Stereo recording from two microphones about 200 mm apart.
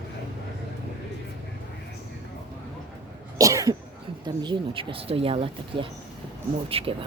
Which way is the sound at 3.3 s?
15° right (ahead or behind).